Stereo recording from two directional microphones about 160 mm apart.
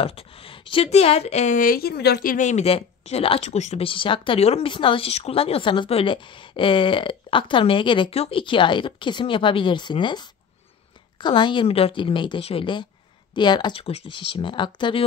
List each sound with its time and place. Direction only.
0.0 s speech: 40° left (ahead or behind)